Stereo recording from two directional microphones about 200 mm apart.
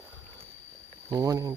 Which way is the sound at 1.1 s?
20° right (ahead or behind).